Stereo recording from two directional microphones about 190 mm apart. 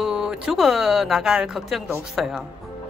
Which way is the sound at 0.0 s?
5° right (ahead or behind).